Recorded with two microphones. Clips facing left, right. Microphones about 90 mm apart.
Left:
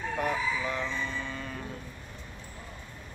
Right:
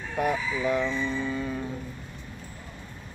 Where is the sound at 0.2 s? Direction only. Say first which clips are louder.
Right 5 dB; 10° right (ahead or behind).